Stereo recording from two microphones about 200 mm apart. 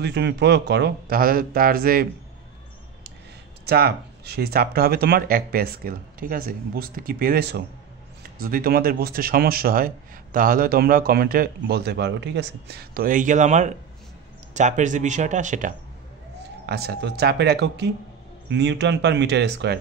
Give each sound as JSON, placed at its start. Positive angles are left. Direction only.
{"t": 0.0, "sound": "speech", "side_deg": -60}
{"t": 3.6, "sound": "speech", "side_deg": -50}
{"t": 16.6, "sound": "speech", "side_deg": -55}